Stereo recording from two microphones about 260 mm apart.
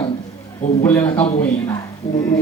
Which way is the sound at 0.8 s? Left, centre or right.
Centre.